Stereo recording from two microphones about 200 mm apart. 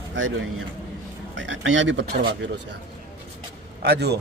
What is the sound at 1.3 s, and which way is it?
Speech, 70° right (ahead or behind).